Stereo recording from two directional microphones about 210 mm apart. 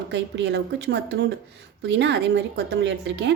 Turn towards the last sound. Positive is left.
turn(degrees=-55)  # may be behind; listen again after turning